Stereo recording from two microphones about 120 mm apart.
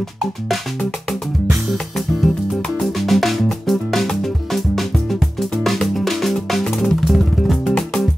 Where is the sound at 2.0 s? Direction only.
Centre (ahead or behind).